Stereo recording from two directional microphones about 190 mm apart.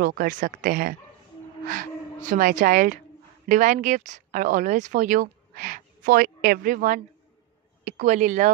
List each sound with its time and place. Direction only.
0.0 s speech: 50° right (ahead or behind)